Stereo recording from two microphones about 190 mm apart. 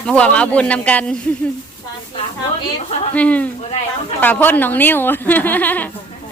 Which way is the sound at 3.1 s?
5° left (ahead or behind).